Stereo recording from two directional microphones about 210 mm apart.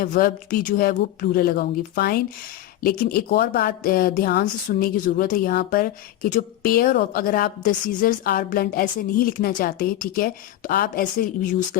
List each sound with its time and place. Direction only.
0.0 s a woman's voice: 45° left (ahead or behind)